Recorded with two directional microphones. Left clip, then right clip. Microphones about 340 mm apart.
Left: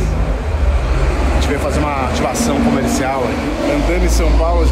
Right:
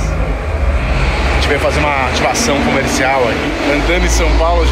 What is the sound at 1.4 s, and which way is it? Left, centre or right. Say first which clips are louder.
Speech: right 5 dB; centre.